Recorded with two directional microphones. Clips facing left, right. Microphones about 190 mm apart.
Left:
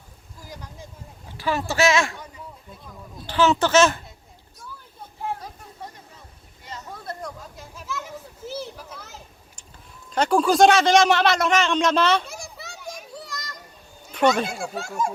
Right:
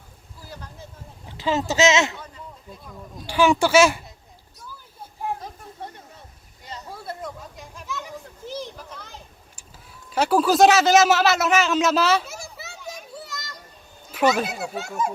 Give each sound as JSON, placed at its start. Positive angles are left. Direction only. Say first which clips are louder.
{"t": 0.4, "sound": "a sound", "louder": "even", "side_deg": 15}
{"t": 1.4, "sound": "speech", "louder": "right 2 dB", "side_deg": -20}
{"t": 2.1, "sound": "a sound", "louder": "even", "side_deg": 10}
{"t": 2.8, "sound": "speech", "louder": "right 1 dB", "side_deg": -10}
{"t": 6.9, "sound": "chatter", "louder": "right 1 dB", "side_deg": -5}
{"t": 8.4, "sound": "children playing", "louder": "even", "side_deg": 5}
{"t": 10.1, "sound": "speech", "louder": "even", "side_deg": -5}
{"t": 13.0, "sound": "children playing", "louder": "even", "side_deg": 0}
{"t": 14.1, "sound": "a child's voice", "louder": "left 1 dB", "side_deg": -5}